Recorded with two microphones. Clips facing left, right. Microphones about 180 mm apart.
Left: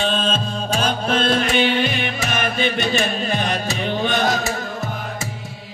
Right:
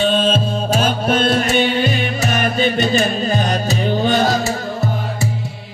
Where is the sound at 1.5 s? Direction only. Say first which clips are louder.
Right 2 dB; 40° right (ahead or behind).